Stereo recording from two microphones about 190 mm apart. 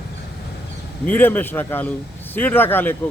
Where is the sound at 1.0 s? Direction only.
10° left (ahead or behind).